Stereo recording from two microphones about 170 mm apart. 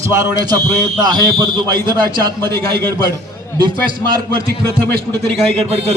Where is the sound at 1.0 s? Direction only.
25° right (ahead or behind).